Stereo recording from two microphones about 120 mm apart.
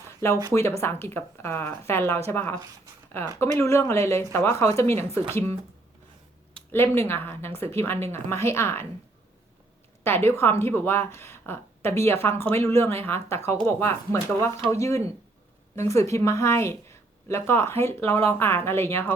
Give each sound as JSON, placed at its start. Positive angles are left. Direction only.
{"t": 0.5, "sound": "a woman's voice", "side_deg": 25}
{"t": 6.7, "sound": "a woman's voice", "side_deg": 20}
{"t": 10.0, "sound": "a woman's voice", "side_deg": 20}